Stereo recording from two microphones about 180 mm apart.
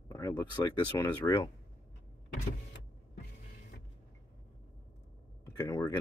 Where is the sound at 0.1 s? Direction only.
15° left (ahead or behind).